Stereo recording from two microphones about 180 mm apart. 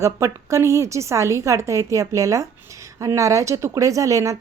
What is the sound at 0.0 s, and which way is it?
A woman's voice, 15° right (ahead or behind).